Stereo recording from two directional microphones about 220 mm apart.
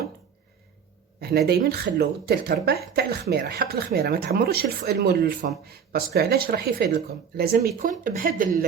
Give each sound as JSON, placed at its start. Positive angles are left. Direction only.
{"t": 1.2, "sound": "speech", "side_deg": -45}